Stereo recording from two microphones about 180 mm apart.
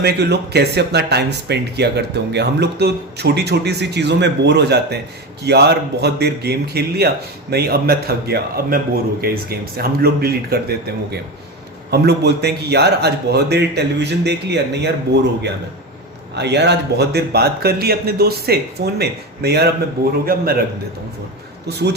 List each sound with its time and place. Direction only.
0.0 s a man's voice: 65° right (ahead or behind)
21.7 s a man's voice: 65° right (ahead or behind)